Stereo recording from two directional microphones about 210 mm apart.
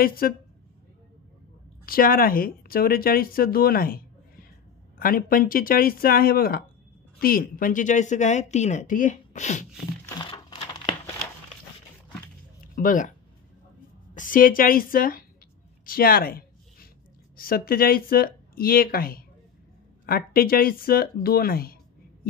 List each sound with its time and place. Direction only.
0.0 s speech: 45° left (ahead or behind)
1.9 s speech: 45° left (ahead or behind)
10.0 s a sound: 20° left (ahead or behind)
12.7 s speech: 40° left (ahead or behind)
14.1 s speech: 40° left (ahead or behind)
15.8 s a sound: 45° left (ahead or behind)
17.4 s speech: 45° left (ahead or behind)